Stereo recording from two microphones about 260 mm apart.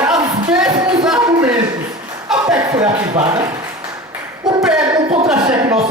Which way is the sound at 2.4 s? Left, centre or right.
Centre.